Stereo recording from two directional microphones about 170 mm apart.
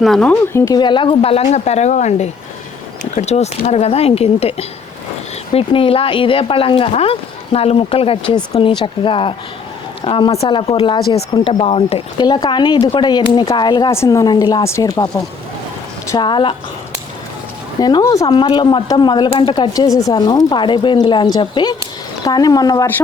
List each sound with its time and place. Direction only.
0.0 s speech: 5° left (ahead or behind); by 12.2 s 35° left (ahead or behind)
12.2 s speech: 25° left (ahead or behind)
16.1 s speech: 25° left (ahead or behind)
17.7 s speech: 25° left (ahead or behind)